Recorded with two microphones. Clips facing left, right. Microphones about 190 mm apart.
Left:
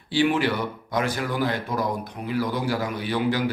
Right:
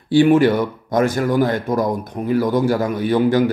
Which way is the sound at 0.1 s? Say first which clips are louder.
Right 9 dB; 45° right (ahead or behind).